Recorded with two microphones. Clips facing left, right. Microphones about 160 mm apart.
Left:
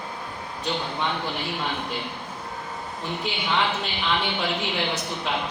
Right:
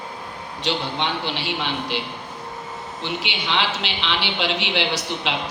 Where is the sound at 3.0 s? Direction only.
90° right.